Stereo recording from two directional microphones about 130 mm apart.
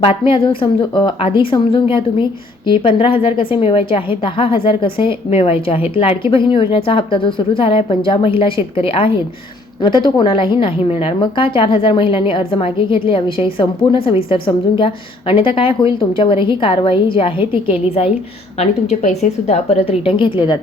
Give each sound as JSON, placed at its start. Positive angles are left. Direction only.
{"t": 0.0, "sound": "a woman's voice", "side_deg": 45}